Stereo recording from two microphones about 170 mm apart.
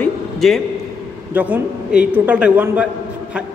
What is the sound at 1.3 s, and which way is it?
A man's voice, 10° right (ahead or behind).